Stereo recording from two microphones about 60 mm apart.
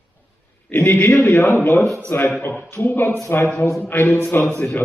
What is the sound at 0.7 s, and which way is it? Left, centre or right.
Speech, left.